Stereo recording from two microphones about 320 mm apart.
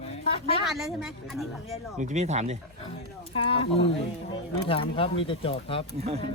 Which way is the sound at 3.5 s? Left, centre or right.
Centre.